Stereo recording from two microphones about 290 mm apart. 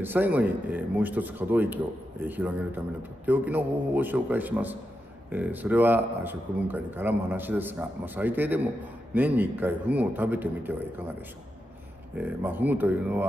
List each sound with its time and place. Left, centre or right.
0.0 s a man's voice: centre
12.2 s speech: centre